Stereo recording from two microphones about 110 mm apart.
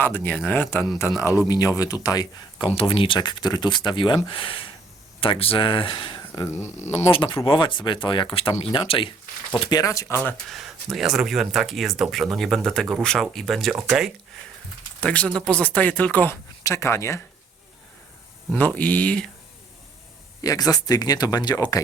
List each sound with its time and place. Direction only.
0.0 s speech: 20° left (ahead or behind)
1.5 s speech: 30° left (ahead or behind)
2.7 s speech: 55° left (ahead or behind); by 6.5 s 35° left (ahead or behind)
7.1 s speech: 55° left (ahead or behind)
9.6 s speech: 40° left (ahead or behind)
10.5 s speech: centre (ahead or behind)
15.0 s speech: 10° left (ahead or behind)
16.3 s speech: 25° left (ahead or behind)
18.5 s speech: 15° left (ahead or behind)
20.4 s speech: 35° left (ahead or behind)